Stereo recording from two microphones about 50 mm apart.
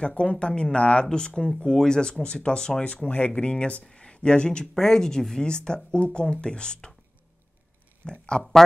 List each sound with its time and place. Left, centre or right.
0.0 s speech: centre
3.1 s speech: left
8.0 s speech: centre